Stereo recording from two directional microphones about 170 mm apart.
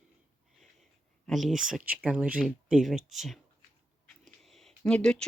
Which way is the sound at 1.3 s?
Centre (ahead or behind).